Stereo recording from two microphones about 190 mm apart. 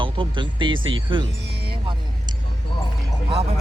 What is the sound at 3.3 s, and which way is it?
Speech, 30° right (ahead or behind).